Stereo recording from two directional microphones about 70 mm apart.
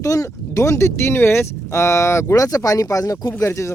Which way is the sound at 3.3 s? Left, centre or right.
Left.